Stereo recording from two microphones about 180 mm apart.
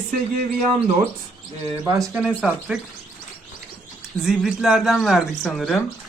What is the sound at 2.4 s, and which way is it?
Speech, 5° right (ahead or behind).